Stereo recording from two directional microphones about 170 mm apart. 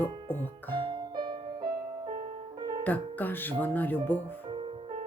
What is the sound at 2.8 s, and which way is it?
Speech, 10° left (ahead or behind).